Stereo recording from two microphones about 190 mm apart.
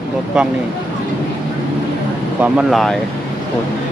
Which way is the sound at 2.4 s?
5° right (ahead or behind).